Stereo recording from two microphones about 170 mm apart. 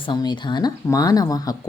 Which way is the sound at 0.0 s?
25° left (ahead or behind).